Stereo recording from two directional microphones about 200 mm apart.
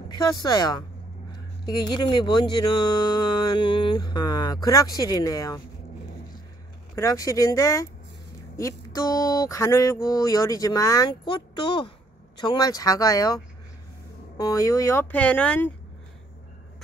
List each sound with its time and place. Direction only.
0.2 s speech: 20° left (ahead or behind)
7.0 s speech: 15° left (ahead or behind)
14.4 s speech: 15° left (ahead or behind)